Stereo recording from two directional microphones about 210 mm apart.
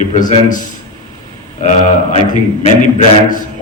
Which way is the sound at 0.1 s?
35° left (ahead or behind).